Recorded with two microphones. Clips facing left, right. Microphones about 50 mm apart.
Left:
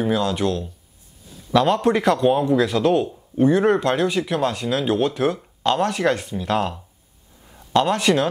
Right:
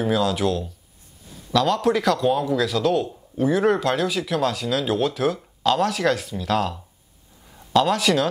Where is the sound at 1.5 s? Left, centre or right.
Centre.